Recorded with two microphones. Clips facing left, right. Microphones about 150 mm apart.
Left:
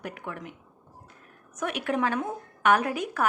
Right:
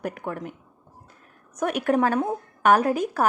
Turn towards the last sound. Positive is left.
turn(degrees=-35)  # may be behind; listen again after turning